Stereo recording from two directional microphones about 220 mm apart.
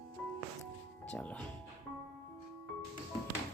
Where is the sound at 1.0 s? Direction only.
5° left (ahead or behind).